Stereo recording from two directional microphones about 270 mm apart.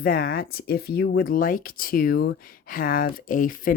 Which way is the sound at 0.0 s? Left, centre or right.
Left.